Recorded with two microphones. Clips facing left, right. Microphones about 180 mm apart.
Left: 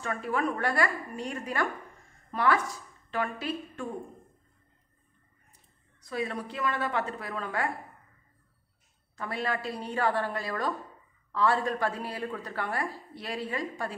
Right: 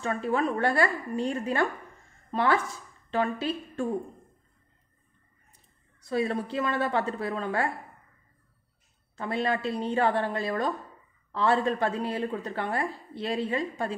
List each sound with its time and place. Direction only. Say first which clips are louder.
0.0 s a woman's voice: right 3 dB; 25° right (ahead or behind)
5.9 s a woman's voice: right 5 dB; 30° right (ahead or behind)
9.1 s a woman's voice: right 4 dB; 25° right (ahead or behind)